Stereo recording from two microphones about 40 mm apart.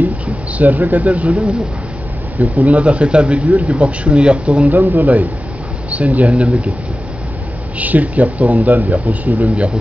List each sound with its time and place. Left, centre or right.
0.6 s speech: right
2.4 s speech: right
4.6 s speech: right
7.8 s speech: right